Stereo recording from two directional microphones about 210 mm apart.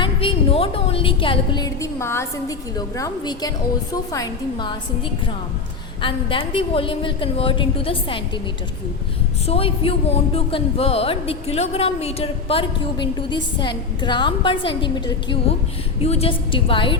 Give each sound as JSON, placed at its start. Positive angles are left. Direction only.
{"t": 0.0, "sound": "a woman's voice", "side_deg": 25}
{"t": 6.0, "sound": "speech", "side_deg": 25}
{"t": 9.5, "sound": "speech", "side_deg": 25}